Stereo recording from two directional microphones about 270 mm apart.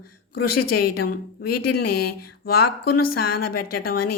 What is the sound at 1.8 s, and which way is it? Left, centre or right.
Speech, left.